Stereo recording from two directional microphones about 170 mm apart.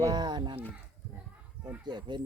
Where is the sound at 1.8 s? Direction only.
25° right (ahead or behind).